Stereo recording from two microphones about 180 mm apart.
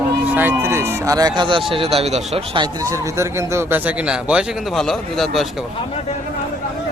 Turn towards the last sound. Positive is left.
turn(degrees=0)  # may be behind; listen again after turning